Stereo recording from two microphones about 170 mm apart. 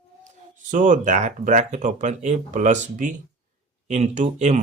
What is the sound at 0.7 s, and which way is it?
Speech, 45° right (ahead or behind).